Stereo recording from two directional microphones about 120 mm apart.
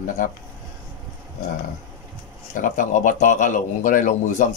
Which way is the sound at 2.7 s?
90° left.